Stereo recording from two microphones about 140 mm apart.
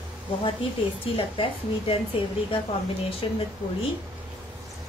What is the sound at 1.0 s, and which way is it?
A woman's voice, 40° left (ahead or behind).